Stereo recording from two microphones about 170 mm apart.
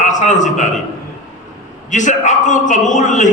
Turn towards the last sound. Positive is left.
turn(degrees=45)  # may be behind; listen again after turning